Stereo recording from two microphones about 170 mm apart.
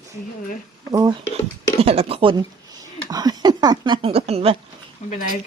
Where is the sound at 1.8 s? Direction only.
35° right (ahead or behind).